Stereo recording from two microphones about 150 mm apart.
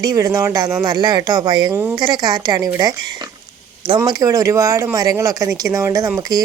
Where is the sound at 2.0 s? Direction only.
30° right (ahead or behind).